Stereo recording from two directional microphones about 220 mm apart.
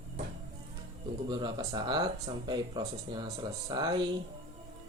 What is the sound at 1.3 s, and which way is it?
Speech, 20° right (ahead or behind).